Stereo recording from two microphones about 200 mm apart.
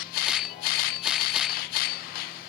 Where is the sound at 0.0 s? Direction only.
45° left (ahead or behind).